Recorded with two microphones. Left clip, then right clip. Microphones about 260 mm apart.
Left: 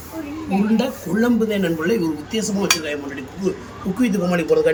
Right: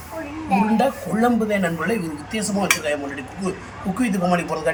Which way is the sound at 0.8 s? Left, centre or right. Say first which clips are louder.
Right 2 dB; centre.